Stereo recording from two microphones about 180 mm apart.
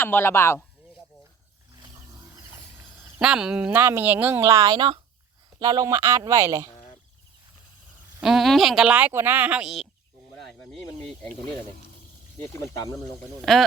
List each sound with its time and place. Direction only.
0.0 s a man's voice: 10° left (ahead or behind)
3.2 s speech: 5° right (ahead or behind)
8.2 s speech: centre (ahead or behind)
11.2 s a man's voice: 5° left (ahead or behind)
12.5 s speech: 20° left (ahead or behind)
13.4 s speech: centre (ahead or behind)